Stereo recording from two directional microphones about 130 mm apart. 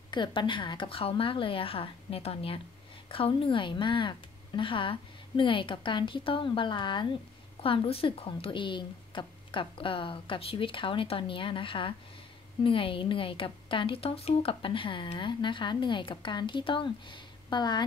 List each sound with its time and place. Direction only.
0.1 s a woman's voice: 35° left (ahead or behind)